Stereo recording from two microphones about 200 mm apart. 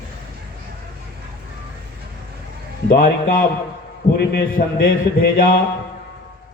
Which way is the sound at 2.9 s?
45° left (ahead or behind).